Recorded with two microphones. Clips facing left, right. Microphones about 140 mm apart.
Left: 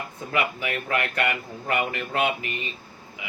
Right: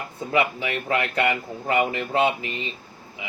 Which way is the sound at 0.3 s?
25° right (ahead or behind).